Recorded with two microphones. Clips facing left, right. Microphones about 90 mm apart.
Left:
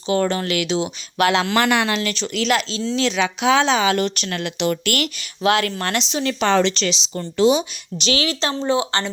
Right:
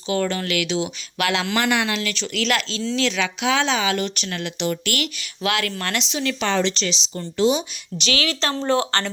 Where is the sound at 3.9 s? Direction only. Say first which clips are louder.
Left 4 dB; 50° left (ahead or behind); by 4.8 s 75° left (ahead or behind).